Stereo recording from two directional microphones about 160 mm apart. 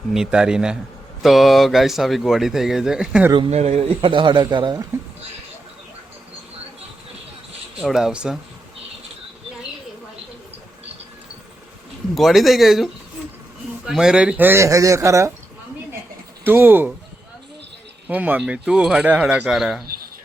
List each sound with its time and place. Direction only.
0.1 s speech: 5° right (ahead or behind)
3.3 s a man's voice: 35° right (ahead or behind)
7.8 s speech: centre (ahead or behind)
12.1 s speech: centre (ahead or behind); by 15.3 s 20° right (ahead or behind)
16.4 s speech: 15° right (ahead or behind)
18.1 s speech: 10° right (ahead or behind)